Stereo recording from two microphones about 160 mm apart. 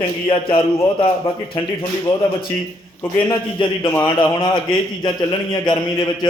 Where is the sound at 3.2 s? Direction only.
30° left (ahead or behind).